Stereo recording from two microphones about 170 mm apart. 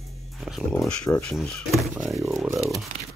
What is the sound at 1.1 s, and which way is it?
Speech, 15° left (ahead or behind).